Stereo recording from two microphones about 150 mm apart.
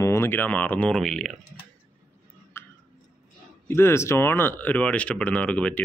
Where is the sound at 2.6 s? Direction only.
15° left (ahead or behind).